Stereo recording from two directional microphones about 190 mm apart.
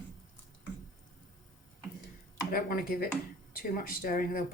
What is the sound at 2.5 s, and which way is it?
Speech, 50° left (ahead or behind).